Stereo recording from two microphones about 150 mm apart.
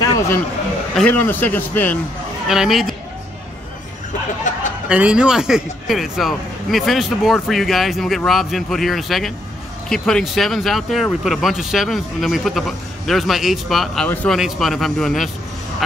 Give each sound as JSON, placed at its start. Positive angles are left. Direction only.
{"t": 0.0, "sound": "a sound", "side_deg": 20}
{"t": 0.9, "sound": "speech", "side_deg": 10}
{"t": 2.4, "sound": "a man's voice", "side_deg": -5}
{"t": 4.8, "sound": "a man's voice", "side_deg": -5}